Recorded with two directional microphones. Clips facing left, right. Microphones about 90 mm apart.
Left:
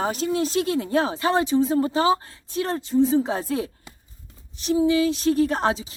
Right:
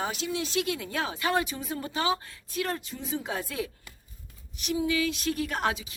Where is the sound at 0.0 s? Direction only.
40° left (ahead or behind).